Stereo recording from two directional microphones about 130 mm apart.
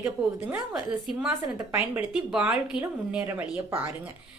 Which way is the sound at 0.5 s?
5° right (ahead or behind).